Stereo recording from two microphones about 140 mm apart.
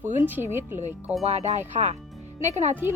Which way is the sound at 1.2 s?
50° right (ahead or behind).